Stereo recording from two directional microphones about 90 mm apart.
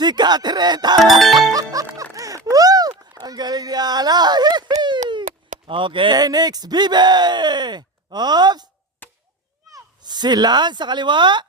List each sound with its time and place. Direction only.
0.0 s speech: 50° right (ahead or behind)
1.2 s music: centre (ahead or behind)
1.5 s music: 40° right (ahead or behind)
2.1 s a sound: 40° right (ahead or behind); by 5.2 s 60° right (ahead or behind)
5.6 s speech: 70° right (ahead or behind)
6.1 s speech: 50° right (ahead or behind)
9.0 s chop: 20° left (ahead or behind)
9.7 s speech: 50° right (ahead or behind)